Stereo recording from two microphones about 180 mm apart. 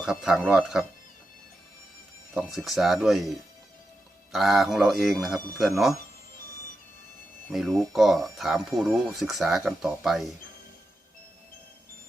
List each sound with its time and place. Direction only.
0.0 s speech: 5° right (ahead or behind)
2.3 s speech: centre (ahead or behind)
7.5 s speech: centre (ahead or behind)